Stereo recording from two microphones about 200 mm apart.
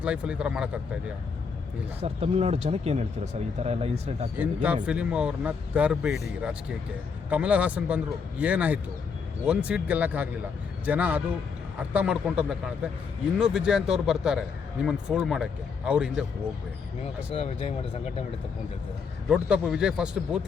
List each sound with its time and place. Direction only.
0.0 s speech: 5° right (ahead or behind)
2.0 s speech: 30° right (ahead or behind)
4.4 s speech: 5° right (ahead or behind)
17.3 s speech: 30° left (ahead or behind)
19.3 s speech: 5° right (ahead or behind)